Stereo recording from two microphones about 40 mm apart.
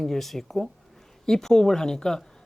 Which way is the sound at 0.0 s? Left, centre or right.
Centre.